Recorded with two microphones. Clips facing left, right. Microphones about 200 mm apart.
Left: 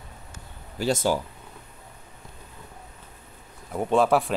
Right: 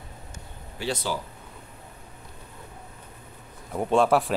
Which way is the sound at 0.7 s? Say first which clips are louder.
Left 6 dB; 45° left (ahead or behind).